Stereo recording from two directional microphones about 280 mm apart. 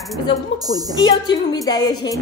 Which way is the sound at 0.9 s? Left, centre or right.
Centre.